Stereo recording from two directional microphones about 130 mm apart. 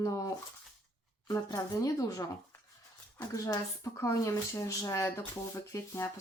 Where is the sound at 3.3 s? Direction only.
25° left (ahead or behind).